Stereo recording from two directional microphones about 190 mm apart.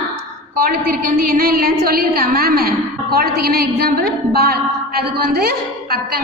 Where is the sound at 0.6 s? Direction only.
50° right (ahead or behind).